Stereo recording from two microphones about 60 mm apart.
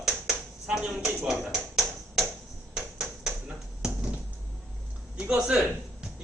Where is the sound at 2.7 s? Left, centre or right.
Centre.